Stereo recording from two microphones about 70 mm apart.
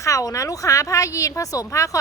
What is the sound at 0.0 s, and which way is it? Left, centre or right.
A woman's voice, left.